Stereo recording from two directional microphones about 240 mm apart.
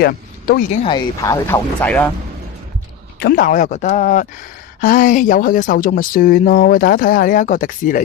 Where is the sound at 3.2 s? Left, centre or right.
Left.